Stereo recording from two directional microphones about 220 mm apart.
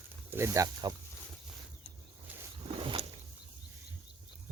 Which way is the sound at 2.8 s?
25° right (ahead or behind).